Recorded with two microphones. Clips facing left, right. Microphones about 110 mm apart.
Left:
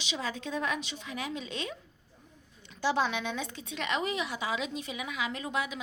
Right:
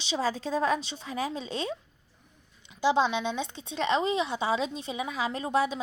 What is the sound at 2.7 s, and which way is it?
Speech, 15° right (ahead or behind).